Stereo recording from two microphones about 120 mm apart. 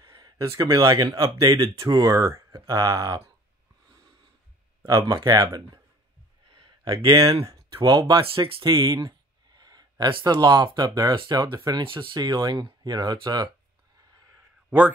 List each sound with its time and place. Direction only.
0.0 s speech: 30° right (ahead or behind)
4.8 s speech: 30° right (ahead or behind)
6.5 s a sound: 35° right (ahead or behind)
7.4 s speech: 30° right (ahead or behind)
8.2 s speech: 50° right (ahead or behind)
8.7 s speech: 30° right (ahead or behind)